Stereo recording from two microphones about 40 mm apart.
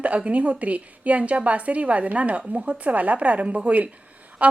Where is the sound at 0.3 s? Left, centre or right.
Right.